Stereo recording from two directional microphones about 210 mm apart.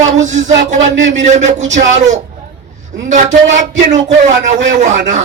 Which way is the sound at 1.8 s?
45° right (ahead or behind).